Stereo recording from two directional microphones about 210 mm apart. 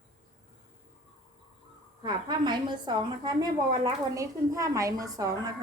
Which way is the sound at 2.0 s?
20° right (ahead or behind).